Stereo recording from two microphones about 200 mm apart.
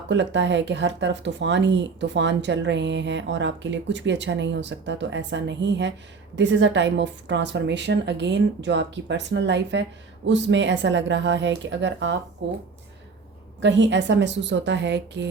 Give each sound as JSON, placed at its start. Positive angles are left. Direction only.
{"t": 0.1, "sound": "speech", "side_deg": -60}
{"t": 13.6, "sound": "speech", "side_deg": -65}